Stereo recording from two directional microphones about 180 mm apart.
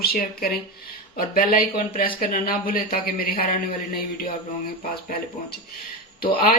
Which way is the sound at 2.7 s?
55° left (ahead or behind).